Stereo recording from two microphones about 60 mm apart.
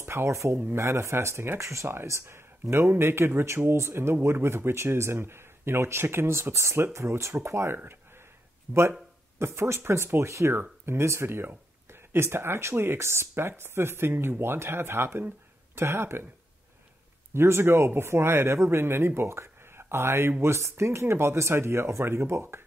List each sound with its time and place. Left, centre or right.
0.0 s speech: right
7.7 s speech: right
17.3 s speech: right